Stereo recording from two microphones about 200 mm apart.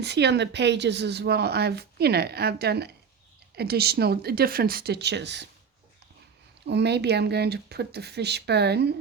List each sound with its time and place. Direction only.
0.0 s speech: 55° right (ahead or behind)
6.7 s speech: 55° right (ahead or behind)